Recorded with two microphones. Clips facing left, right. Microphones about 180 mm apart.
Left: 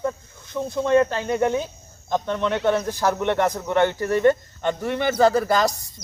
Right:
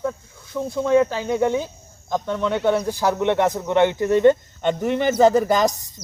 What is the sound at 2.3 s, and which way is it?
Speech, 10° right (ahead or behind).